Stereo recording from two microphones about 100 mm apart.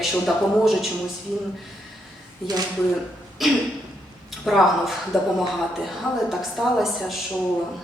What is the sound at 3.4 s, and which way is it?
A woman's voice, centre (ahead or behind).